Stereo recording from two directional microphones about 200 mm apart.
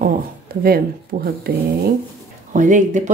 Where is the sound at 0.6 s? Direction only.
50° right (ahead or behind).